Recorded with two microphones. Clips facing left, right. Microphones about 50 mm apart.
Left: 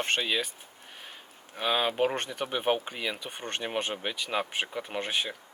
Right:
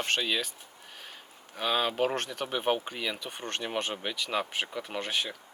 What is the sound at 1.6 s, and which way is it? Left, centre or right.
Speech, centre.